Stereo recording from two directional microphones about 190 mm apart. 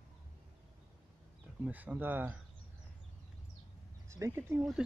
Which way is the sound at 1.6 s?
10° right (ahead or behind).